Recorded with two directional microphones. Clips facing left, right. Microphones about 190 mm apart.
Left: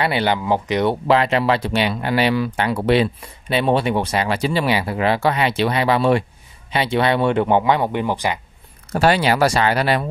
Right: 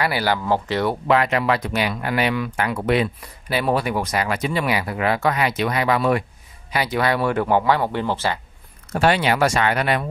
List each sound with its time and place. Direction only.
0.0 s speech: 25° left (ahead or behind)
1.0 s speech: 30° left (ahead or behind)
8.9 s speech: 35° left (ahead or behind)